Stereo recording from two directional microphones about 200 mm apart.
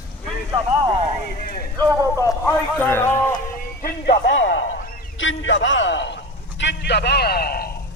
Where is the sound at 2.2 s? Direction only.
15° left (ahead or behind).